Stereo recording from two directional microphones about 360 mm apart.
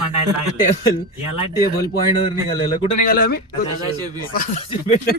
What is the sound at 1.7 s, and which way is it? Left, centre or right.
Speech, left.